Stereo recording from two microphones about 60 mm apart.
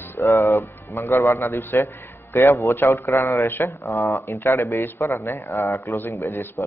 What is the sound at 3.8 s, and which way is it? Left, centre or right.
A man's voice, left.